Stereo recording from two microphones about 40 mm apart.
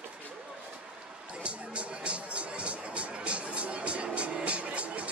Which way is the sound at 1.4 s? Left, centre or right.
Right.